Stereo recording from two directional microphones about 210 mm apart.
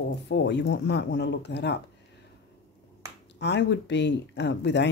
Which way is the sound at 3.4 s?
55° left (ahead or behind).